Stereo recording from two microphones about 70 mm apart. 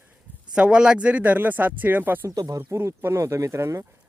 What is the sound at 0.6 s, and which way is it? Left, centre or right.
Speech, centre.